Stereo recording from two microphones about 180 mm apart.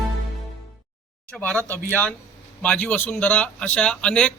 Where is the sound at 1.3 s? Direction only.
5° left (ahead or behind).